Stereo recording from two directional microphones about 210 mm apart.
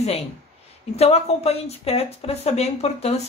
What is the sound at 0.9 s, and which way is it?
Speech, 30° left (ahead or behind).